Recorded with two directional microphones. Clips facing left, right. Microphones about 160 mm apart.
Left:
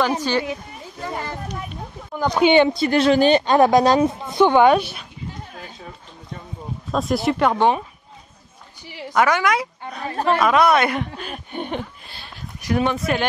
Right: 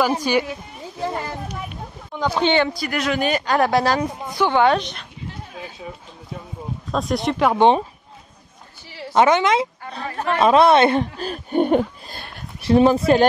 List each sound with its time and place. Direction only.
0.0 s speech: 10° right (ahead or behind)
2.4 s a woman's voice: 20° left (ahead or behind)
6.9 s speech: centre (ahead or behind)
7.5 s a woman's voice: 20° right (ahead or behind)
8.8 s a sound: 15° left (ahead or behind)
9.1 s a woman's voice: 25° right (ahead or behind)
10.0 s speech: 35° left (ahead or behind)
10.3 s speech: 30° right (ahead or behind); by 12.4 s 45° right (ahead or behind)
12.6 s speech: 30° right (ahead or behind)